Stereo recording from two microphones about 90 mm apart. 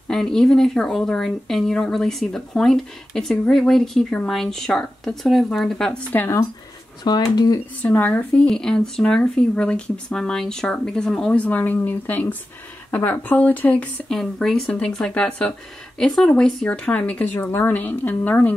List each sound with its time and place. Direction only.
0.1 s speech: 5° left (ahead or behind)
6.1 s speech: 25° left (ahead or behind)
7.3 s speech: 45° left (ahead or behind)
7.8 s speech: 20° left (ahead or behind)
8.5 s speech: 5° left (ahead or behind)
14.0 s speech: centre (ahead or behind); by 18.5 s 20° left (ahead or behind)